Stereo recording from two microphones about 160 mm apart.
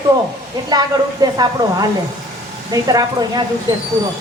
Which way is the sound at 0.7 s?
25° right (ahead or behind).